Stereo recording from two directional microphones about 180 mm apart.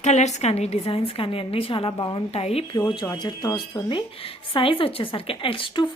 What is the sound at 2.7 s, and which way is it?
A woman's voice, 15° left (ahead or behind).